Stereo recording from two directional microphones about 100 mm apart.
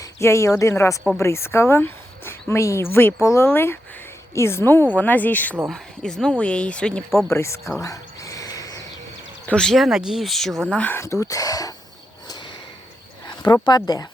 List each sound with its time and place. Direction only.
0.0 s speech: 30° left (ahead or behind)
5.6 s speech: 5° left (ahead or behind)
7.3 s speech: 25° left (ahead or behind)
7.8 s a sound: 35° left (ahead or behind)
9.5 s speech: 5° left (ahead or behind)
10.7 s speech: 10° left (ahead or behind)
10.9 s speech: 30° left (ahead or behind)
13.2 s speech: 45° left (ahead or behind)